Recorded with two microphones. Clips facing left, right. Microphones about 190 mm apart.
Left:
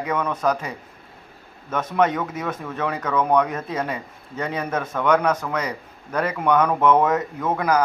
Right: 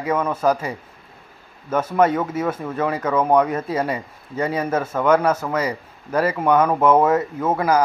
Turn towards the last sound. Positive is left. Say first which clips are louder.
# right 2 dB
turn(degrees=-10)  # may be behind; listen again after turning